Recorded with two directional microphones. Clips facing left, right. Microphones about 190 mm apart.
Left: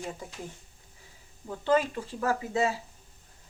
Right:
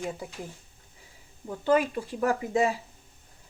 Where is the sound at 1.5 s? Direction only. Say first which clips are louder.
Right 2 dB; 15° right (ahead or behind).